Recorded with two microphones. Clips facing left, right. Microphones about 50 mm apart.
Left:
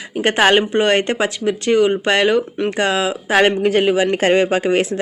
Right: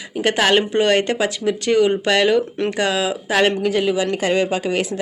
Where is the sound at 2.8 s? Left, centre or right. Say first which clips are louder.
Left 2 dB; left.